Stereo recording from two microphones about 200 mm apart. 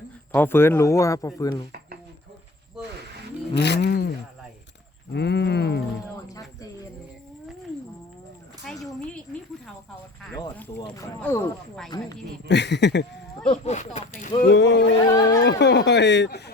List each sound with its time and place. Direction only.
0.3 s speech: 10° left (ahead or behind)
3.5 s speech: 60° left (ahead or behind)
5.1 s speech: 55° left (ahead or behind)
8.7 s a sound: centre (ahead or behind)
10.8 s speech: 15° left (ahead or behind)
12.5 s speech: 60° left (ahead or behind)
13.5 s speech: 35° left (ahead or behind)
14.5 s speech: 60° left (ahead or behind)
15.0 s speech: 20° left (ahead or behind)
15.4 s speech: 55° left (ahead or behind)